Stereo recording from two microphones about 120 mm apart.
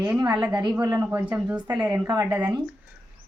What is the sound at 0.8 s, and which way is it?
Speech, 25° right (ahead or behind).